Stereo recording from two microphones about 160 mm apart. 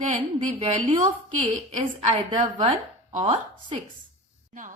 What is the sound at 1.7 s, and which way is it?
Speech, 45° right (ahead or behind).